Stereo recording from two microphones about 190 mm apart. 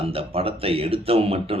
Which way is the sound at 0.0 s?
30° right (ahead or behind).